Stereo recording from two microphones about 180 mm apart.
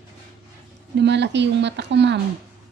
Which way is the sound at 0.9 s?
75° right (ahead or behind).